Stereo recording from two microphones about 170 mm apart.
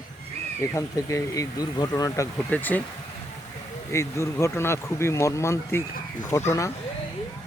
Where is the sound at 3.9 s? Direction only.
15° left (ahead or behind).